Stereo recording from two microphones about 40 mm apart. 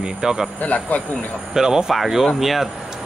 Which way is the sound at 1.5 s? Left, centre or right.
Centre.